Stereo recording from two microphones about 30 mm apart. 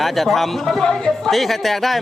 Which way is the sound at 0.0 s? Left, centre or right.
Centre.